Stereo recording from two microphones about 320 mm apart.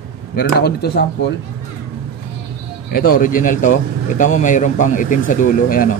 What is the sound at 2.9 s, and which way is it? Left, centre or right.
A man's voice, left.